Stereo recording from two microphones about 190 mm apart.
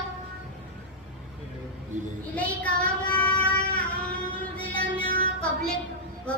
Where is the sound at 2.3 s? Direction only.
5° left (ahead or behind).